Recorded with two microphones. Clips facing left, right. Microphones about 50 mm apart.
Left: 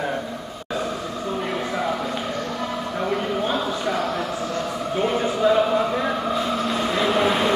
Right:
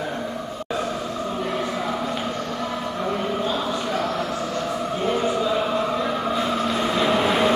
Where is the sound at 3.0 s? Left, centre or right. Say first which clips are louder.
Left 2 dB; centre.